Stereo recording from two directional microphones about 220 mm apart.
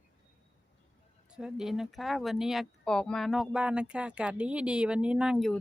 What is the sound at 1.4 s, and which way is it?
Speech, 5° right (ahead or behind).